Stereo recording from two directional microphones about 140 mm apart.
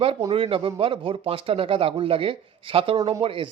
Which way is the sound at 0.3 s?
40° right (ahead or behind).